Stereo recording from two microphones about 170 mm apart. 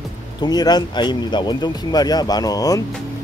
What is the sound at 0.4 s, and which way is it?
Speech, 25° left (ahead or behind).